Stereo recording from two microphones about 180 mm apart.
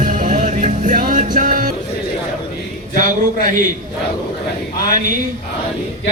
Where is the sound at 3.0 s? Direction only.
45° right (ahead or behind).